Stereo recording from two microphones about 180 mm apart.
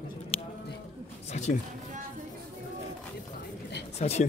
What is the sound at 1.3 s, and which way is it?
Music, 40° left (ahead or behind).